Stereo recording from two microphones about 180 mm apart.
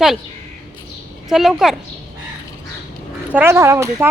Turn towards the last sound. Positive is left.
turn(degrees=-15)  # may be behind; listen again after turning